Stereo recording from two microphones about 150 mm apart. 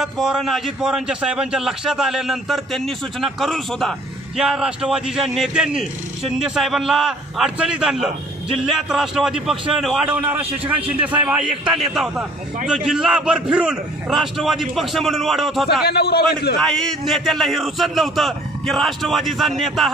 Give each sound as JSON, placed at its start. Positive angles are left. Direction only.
{"t": 0.0, "sound": "a man's voice", "side_deg": 0}
{"t": 15.8, "sound": "a man's voice", "side_deg": 90}
{"t": 16.6, "sound": "a man's voice", "side_deg": 5}